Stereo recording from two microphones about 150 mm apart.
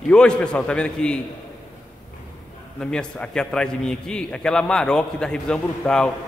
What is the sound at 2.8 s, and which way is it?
A man's voice, 5° left (ahead or behind).